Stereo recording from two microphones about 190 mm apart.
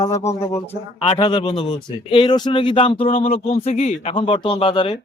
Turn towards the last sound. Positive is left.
turn(degrees=30)  # may be behind; listen again after turning